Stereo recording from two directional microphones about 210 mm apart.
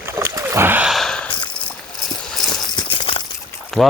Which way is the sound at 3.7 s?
Centre (ahead or behind).